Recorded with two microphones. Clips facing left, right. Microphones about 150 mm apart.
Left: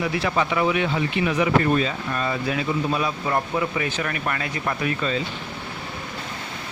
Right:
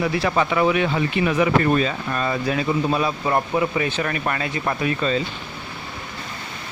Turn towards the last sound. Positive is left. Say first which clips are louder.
# right 3 dB
turn(degrees=-30)  # may be behind; listen again after turning